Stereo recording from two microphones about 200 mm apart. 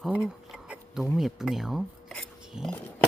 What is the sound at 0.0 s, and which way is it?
Speech, 5° right (ahead or behind).